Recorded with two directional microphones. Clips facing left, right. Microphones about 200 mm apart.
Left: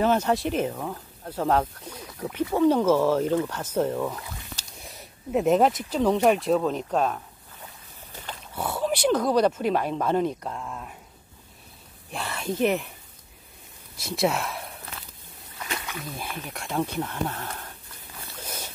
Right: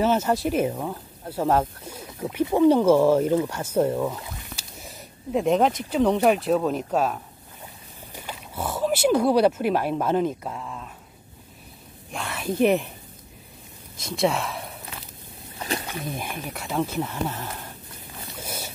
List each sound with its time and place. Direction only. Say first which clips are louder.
0.0 s speech: right 1 dB; 5° right (ahead or behind)
8.1 s boat: right 2 dB; 10° right (ahead or behind)
8.8 s speech: right 3 dB; 5° right (ahead or behind)
12.1 s a sound: right 1 dB; centre (ahead or behind)
12.5 s speech: right 4 dB; 15° right (ahead or behind)
13.9 s speech: right 1 dB; 5° left (ahead or behind)
15.6 s a sound: right 5 dB; 30° right (ahead or behind)
16.1 s speech: right 4 dB; 15° right (ahead or behind)
16.5 s speech: right 1 dB; 5° right (ahead or behind)
18.2 s a sound: right 3 dB; 10° right (ahead or behind)